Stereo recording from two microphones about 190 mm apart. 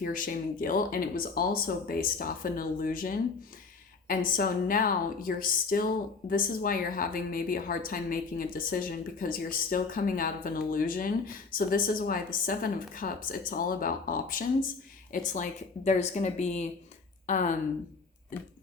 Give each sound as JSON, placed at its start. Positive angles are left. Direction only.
{"t": 0.0, "sound": "a woman's voice", "side_deg": 45}